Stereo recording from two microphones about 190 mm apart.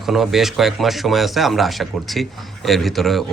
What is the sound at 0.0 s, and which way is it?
Speech, centre (ahead or behind).